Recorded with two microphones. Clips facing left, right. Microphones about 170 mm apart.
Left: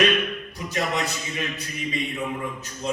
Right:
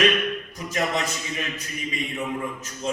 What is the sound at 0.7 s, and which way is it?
Speech, 35° left (ahead or behind).